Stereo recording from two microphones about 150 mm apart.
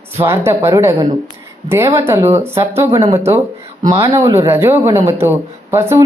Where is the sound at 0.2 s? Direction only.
15° right (ahead or behind).